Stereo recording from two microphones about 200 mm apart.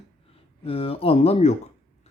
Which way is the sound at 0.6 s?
30° left (ahead or behind).